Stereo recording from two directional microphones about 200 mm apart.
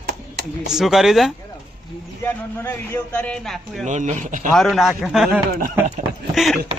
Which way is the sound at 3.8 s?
35° right (ahead or behind).